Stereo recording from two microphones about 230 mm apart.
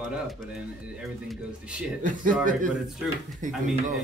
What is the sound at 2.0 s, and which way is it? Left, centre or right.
A man's voice, right.